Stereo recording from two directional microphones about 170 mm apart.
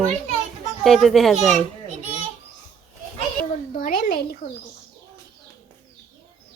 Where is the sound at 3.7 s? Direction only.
55° left (ahead or behind).